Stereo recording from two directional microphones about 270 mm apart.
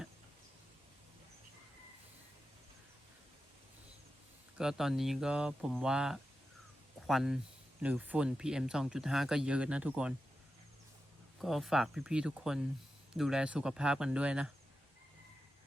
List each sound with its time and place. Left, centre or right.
4.5 s speech: centre
11.3 s speech: centre